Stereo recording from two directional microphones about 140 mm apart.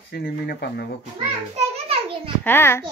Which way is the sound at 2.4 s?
15° left (ahead or behind).